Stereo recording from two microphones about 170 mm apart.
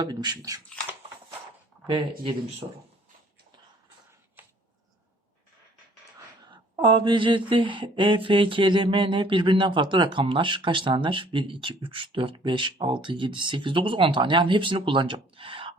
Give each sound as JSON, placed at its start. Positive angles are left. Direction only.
{"t": 0.0, "sound": "speech", "side_deg": -25}
{"t": 1.9, "sound": "speech", "side_deg": -30}
{"t": 6.4, "sound": "a sound", "side_deg": -25}